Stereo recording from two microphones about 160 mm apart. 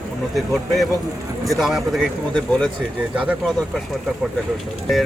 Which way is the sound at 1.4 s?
Centre (ahead or behind).